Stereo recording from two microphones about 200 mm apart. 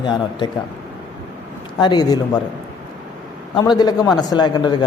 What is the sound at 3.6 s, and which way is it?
A man's voice, 20° left (ahead or behind).